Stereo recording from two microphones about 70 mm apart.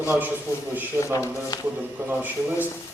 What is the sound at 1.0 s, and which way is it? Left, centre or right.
A man's voice, right.